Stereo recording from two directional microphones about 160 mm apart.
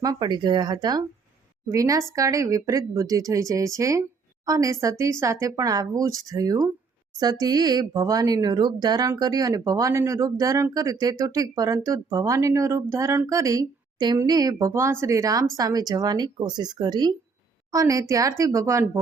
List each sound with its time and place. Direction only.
0.0 s a woman's voice: 25° right (ahead or behind)